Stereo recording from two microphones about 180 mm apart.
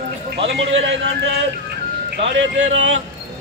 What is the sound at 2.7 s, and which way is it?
Speech, 90° right.